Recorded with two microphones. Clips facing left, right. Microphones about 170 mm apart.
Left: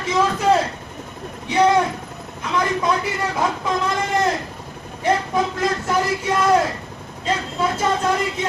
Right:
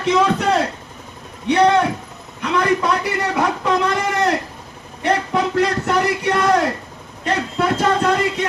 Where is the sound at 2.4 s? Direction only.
65° right (ahead or behind).